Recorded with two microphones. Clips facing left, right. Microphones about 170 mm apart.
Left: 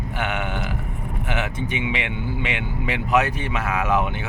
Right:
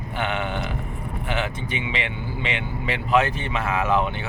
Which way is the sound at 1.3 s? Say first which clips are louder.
Left 1 dB; 15° left (ahead or behind).